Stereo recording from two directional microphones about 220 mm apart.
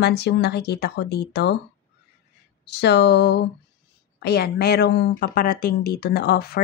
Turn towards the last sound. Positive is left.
turn(degrees=45)  # may be behind; listen again after turning